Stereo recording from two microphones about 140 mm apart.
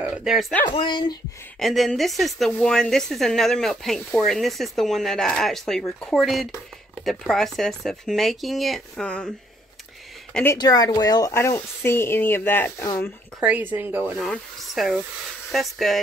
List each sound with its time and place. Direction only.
0.0 s speech: 5° right (ahead or behind)
0.7 s speech: 35° left (ahead or behind)
1.6 s speech: centre (ahead or behind)
10.3 s speech: 15° left (ahead or behind)
10.6 s speech: 30° left (ahead or behind)
13.4 s speech: 10° right (ahead or behind)
14.2 s speech: centre (ahead or behind)